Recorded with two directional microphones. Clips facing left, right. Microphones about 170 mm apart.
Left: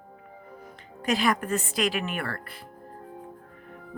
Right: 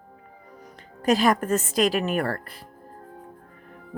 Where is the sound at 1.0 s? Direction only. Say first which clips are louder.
Right 5 dB; 40° right (ahead or behind).